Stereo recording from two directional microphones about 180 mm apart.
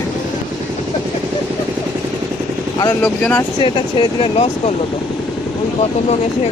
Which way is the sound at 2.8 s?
20° left (ahead or behind).